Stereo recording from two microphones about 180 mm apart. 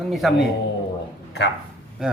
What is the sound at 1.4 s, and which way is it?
Speech, 75° left (ahead or behind).